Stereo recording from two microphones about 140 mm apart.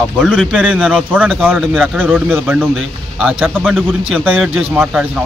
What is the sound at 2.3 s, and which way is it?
Speech, 15° right (ahead or behind).